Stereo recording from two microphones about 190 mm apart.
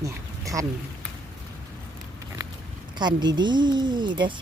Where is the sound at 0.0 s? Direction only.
15° right (ahead or behind).